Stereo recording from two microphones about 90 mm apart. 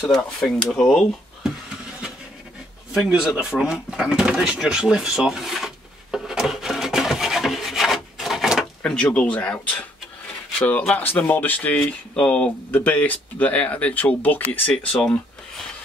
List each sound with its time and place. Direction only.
0.0 s speech: 5° left (ahead or behind)
2.9 s speech: 5° right (ahead or behind)
6.1 s rub: 5° right (ahead or behind)
8.9 s speech: 15° left (ahead or behind)
11.0 s speech: 20° left (ahead or behind)